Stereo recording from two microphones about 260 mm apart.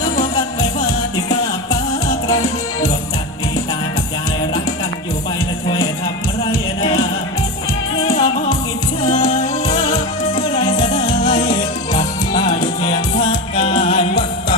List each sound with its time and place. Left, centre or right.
6.8 s music: left
8.1 s music: left